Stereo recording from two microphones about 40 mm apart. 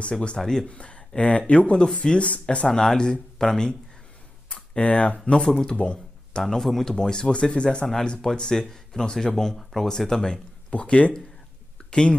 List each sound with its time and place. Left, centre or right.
0.1 s speech: left
0.4 s speech: centre
0.7 s speech: left
2.7 s speech: centre
4.5 s speech: left
5.7 s a sound: left
6.4 s speech: centre; by 7.8 s left
8.2 s speech: centre
9.8 s speech: centre
10.7 s speech: left